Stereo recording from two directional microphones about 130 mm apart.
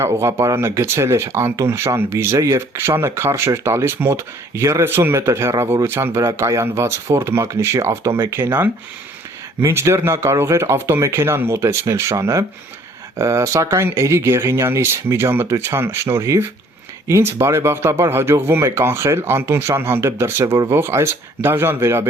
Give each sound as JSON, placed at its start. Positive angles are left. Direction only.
{"t": 0.0, "sound": "speech", "side_deg": -20}